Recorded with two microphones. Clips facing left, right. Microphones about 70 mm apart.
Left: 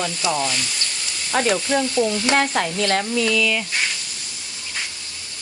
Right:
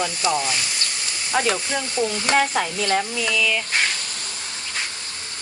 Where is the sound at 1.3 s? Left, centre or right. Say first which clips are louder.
Left 3 dB; centre.